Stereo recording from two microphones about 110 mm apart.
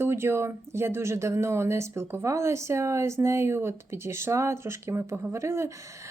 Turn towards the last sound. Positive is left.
turn(degrees=-25)  # may be behind; listen again after turning